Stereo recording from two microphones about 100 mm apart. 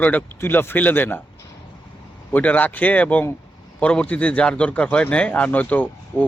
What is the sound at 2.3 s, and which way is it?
Speech, 15° left (ahead or behind).